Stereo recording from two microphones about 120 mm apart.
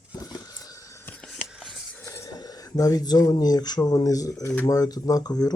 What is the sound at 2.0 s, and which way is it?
Speech, 25° left (ahead or behind).